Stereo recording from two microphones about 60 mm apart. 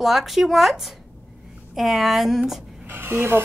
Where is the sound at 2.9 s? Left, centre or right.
Right.